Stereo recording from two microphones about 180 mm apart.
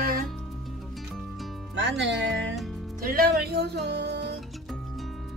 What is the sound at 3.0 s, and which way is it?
Speech, 55° right (ahead or behind).